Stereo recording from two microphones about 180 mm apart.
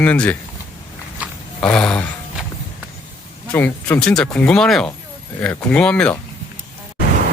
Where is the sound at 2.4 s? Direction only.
5° right (ahead or behind).